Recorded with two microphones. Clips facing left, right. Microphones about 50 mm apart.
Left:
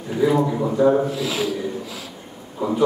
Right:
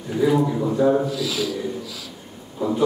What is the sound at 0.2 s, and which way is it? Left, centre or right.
Speech, centre.